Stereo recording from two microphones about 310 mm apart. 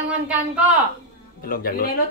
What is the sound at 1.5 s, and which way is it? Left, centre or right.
Speech, left.